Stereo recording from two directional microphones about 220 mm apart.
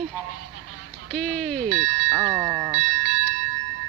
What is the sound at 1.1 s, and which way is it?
Speech, 5° left (ahead or behind).